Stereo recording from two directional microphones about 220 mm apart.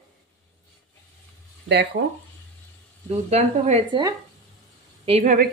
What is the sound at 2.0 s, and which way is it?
Speech, 40° right (ahead or behind).